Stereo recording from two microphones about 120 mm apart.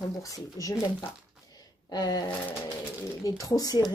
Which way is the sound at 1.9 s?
35° left (ahead or behind).